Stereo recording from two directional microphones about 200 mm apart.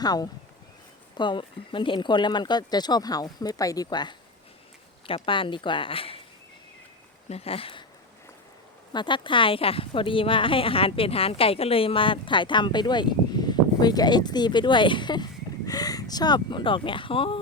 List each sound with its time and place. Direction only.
0.0 s speech: 20° left (ahead or behind)
7.3 s speech: 30° left (ahead or behind)
8.9 s speech: 25° left (ahead or behind)